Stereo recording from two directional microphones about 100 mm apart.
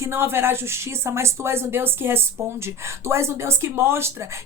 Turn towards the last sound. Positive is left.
turn(degrees=-25)  # may be behind; listen again after turning